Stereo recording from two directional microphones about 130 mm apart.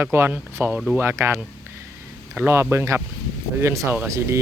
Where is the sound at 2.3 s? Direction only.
20° right (ahead or behind).